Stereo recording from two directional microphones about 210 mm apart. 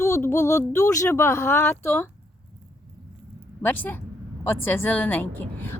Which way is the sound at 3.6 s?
10° left (ahead or behind).